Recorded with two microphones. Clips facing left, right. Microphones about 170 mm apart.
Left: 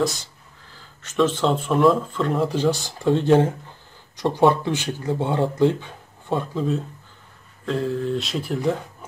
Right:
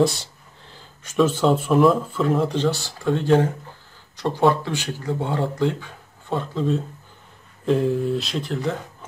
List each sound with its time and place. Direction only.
1.0 s speech: 10° right (ahead or behind); by 6.6 s 15° left (ahead or behind)
7.6 s speech: 15° right (ahead or behind); by 8.7 s 10° left (ahead or behind)